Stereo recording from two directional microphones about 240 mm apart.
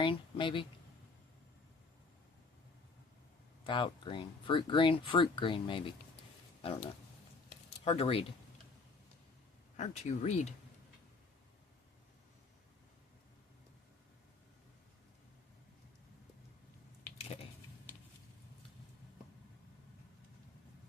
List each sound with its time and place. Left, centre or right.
0.0 s speech: left
3.6 s speech: centre
7.9 s speech: left
9.7 s speech: left